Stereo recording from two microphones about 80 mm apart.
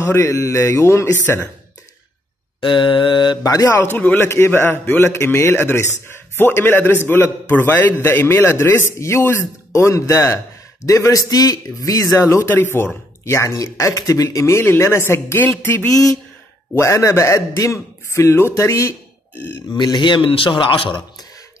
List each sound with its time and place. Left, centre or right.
0.0 s a man's voice: left
1.2 s speech: left
2.6 s a man's voice: left
3.4 s speech: left
3.8 s a man's voice: left
12.7 s a man's voice: left
15.9 s a man's voice: left
19.7 s a man's voice: left